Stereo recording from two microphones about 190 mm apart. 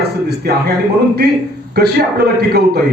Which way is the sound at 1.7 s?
55° right (ahead or behind).